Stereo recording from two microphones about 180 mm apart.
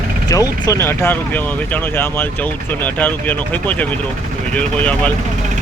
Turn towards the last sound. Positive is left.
turn(degrees=5)  # may be behind; listen again after turning